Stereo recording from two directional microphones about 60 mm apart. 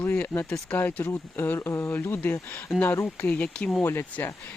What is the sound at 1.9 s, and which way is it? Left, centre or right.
Speech, left.